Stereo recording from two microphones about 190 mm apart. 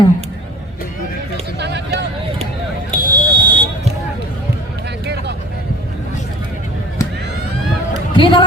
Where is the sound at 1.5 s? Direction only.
65° right (ahead or behind).